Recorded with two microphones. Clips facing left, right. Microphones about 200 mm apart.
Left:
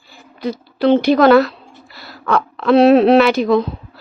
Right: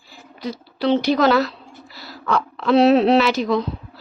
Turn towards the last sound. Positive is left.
turn(degrees=55)  # may be behind; listen again after turning